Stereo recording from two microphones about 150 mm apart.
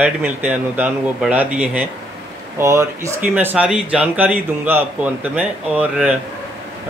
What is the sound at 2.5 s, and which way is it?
Speech, 20° right (ahead or behind).